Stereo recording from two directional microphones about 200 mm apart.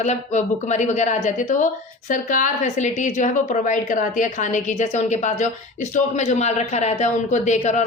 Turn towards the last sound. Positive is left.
turn(degrees=35)  # may be behind; listen again after turning